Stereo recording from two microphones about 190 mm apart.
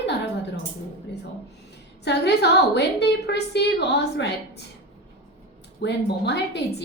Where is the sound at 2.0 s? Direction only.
65° left (ahead or behind).